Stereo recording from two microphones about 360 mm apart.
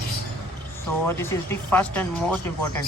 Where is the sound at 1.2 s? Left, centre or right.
Centre.